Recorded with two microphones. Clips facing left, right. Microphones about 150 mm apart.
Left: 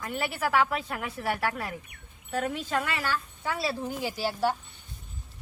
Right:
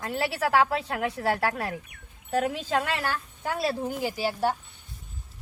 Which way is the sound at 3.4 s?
50° right (ahead or behind).